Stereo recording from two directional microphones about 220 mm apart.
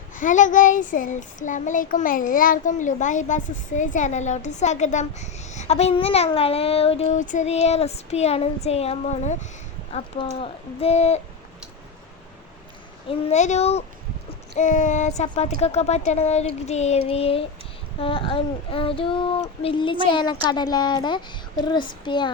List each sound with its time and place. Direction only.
0.1 s child singing: 35° left (ahead or behind)
9.9 s speech: 25° left (ahead or behind)
13.1 s speech: 30° left (ahead or behind)